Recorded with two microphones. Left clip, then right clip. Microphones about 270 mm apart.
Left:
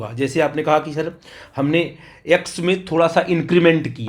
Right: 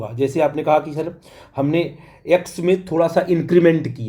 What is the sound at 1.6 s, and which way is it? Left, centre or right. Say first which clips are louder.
Speech: left 2 dB; centre.